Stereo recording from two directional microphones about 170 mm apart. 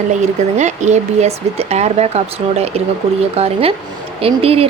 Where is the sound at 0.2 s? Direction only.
45° right (ahead or behind).